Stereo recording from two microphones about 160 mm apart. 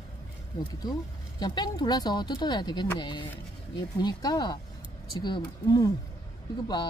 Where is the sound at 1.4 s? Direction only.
25° left (ahead or behind).